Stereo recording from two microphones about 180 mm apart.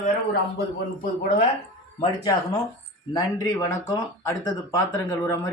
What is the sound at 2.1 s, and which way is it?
Speech, 20° left (ahead or behind).